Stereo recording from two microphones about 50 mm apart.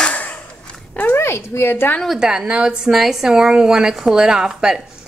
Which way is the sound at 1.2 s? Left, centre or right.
Left.